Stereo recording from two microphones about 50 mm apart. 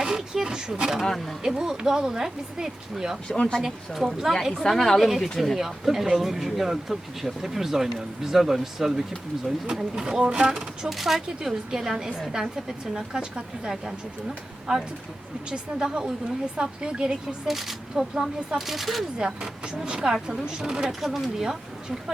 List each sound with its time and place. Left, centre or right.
0.0 s speech: centre
1.0 s speech: centre
1.4 s speech: centre
3.2 s speech: centre
3.6 s speech: centre
10.8 s speech: centre
17.5 s speech: centre
19.2 s speech: centre